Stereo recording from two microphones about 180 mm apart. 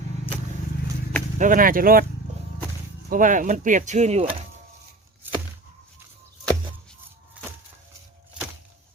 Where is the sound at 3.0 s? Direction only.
50° right (ahead or behind).